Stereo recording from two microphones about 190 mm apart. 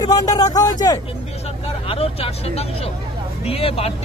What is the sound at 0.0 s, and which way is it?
Speech, 20° left (ahead or behind).